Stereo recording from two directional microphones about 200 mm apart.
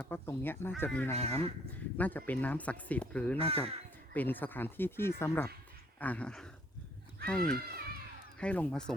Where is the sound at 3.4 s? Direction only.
30° right (ahead or behind).